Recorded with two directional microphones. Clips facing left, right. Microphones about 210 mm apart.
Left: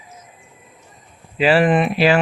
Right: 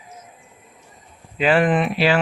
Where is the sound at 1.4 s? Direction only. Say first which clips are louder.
Left 2 dB; 5° left (ahead or behind).